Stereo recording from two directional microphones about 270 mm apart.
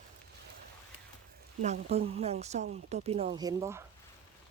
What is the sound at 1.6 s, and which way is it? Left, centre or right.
Speech, right.